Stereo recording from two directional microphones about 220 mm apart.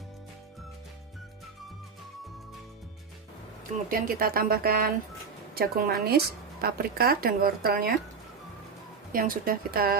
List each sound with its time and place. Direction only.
3.9 s a woman's voice: 40° right (ahead or behind)
9.1 s speech: 40° right (ahead or behind)